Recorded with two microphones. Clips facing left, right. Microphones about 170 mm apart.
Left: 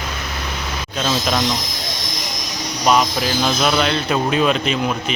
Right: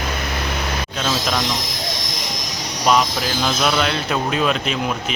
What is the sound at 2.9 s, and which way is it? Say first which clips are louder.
Speech: left 1 dB; 5° left (ahead or behind).